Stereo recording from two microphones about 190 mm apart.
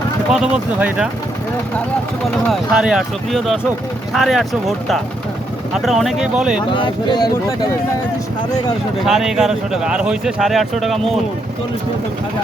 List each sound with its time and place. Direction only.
0.3 s speech: 5° right (ahead or behind)
2.5 s speech: 5° right (ahead or behind)
5.7 s speech: centre (ahead or behind)
6.6 s speech: 25° left (ahead or behind)
9.0 s speech: centre (ahead or behind)